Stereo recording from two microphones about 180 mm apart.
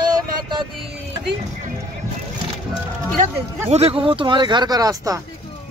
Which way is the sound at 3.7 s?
35° right (ahead or behind).